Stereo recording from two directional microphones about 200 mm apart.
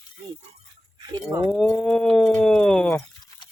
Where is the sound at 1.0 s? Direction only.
20° right (ahead or behind).